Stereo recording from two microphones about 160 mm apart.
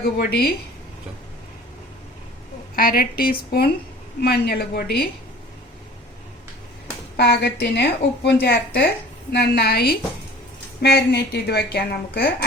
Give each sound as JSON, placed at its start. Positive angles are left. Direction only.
{"t": 0.0, "sound": "a woman's voice", "side_deg": 70}
{"t": 2.7, "sound": "a woman's voice", "side_deg": 65}
{"t": 7.2, "sound": "a woman's voice", "side_deg": 80}
{"t": 10.8, "sound": "a woman's voice", "side_deg": 90}